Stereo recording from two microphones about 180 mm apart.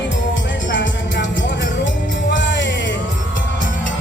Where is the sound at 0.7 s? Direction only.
80° left.